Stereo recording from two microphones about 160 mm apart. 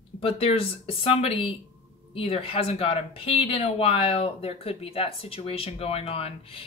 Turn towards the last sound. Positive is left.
turn(degrees=35)  # may be behind; listen again after turning